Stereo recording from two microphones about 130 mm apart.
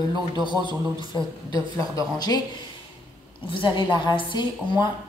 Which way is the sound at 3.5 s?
35° left (ahead or behind).